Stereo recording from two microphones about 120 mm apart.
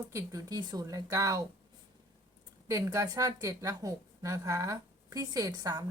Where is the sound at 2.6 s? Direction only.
30° right (ahead or behind).